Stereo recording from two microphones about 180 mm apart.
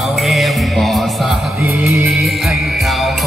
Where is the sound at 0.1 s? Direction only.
Centre (ahead or behind).